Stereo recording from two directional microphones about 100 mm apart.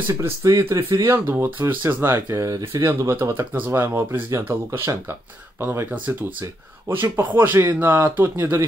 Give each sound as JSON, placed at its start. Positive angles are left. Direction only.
{"t": 0.2, "sound": "speech", "side_deg": -35}